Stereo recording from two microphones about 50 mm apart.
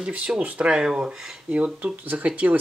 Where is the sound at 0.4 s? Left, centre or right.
Right.